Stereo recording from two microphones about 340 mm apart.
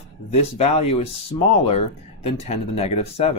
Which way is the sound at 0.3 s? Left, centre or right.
Centre.